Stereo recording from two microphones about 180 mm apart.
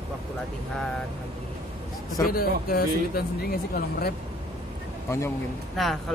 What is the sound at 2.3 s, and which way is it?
Speech, 55° left (ahead or behind).